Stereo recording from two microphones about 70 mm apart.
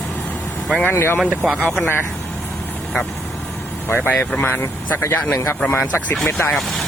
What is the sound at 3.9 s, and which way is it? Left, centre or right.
Speech, left.